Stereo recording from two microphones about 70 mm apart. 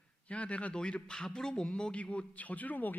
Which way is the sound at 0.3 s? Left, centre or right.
Centre.